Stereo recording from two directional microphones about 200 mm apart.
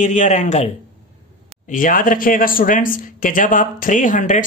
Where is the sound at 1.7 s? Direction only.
40° left (ahead or behind).